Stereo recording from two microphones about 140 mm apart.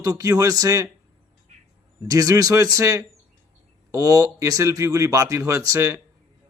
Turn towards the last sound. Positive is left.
turn(degrees=-20)  # may be behind; listen again after turning